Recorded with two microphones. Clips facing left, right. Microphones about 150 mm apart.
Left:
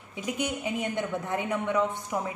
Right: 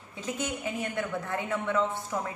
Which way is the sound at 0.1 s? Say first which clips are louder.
Left 2 dB; 15° left (ahead or behind).